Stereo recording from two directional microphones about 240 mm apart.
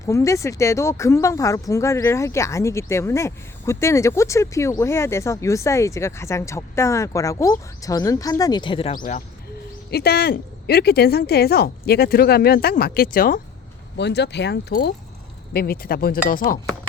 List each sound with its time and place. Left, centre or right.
0.0 s speech: centre
8.9 s speech: left